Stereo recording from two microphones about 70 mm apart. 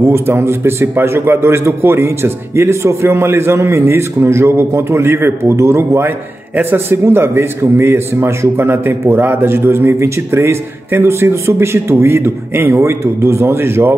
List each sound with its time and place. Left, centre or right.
0.0 s speech: right